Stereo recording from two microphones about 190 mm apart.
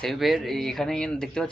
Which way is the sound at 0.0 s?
Centre (ahead or behind).